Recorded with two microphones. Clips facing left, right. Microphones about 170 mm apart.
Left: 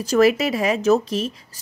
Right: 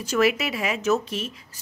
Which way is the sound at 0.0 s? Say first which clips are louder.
Left 6 dB; 35° left (ahead or behind).